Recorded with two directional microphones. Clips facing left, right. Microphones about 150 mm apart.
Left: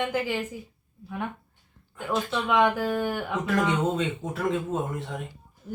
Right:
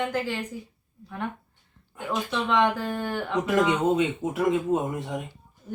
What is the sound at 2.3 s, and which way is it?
Speech, 10° left (ahead or behind).